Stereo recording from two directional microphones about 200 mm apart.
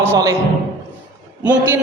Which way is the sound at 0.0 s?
15° right (ahead or behind).